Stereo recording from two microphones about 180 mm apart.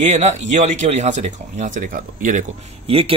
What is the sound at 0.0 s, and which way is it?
Speech, 40° right (ahead or behind).